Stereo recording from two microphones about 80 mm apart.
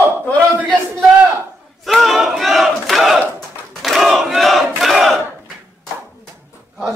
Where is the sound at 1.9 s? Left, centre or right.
Centre.